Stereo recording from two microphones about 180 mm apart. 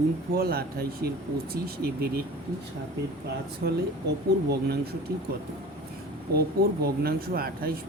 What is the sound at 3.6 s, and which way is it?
Speech, 65° right (ahead or behind).